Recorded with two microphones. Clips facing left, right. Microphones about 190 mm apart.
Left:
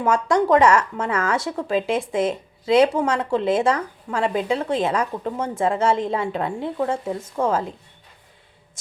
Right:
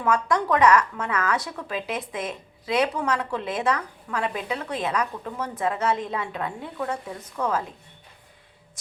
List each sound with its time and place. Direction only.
0.0 s speech: 25° left (ahead or behind)